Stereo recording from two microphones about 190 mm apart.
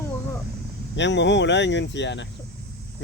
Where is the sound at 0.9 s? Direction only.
70° left (ahead or behind).